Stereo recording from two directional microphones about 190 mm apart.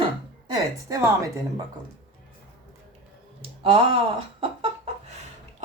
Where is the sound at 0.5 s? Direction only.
15° right (ahead or behind).